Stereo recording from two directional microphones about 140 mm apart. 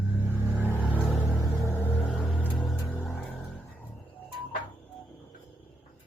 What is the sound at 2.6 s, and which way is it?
Music, 10° left (ahead or behind).